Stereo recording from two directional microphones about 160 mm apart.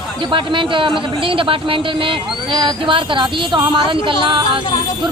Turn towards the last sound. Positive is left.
turn(degrees=-30)  # may be behind; listen again after turning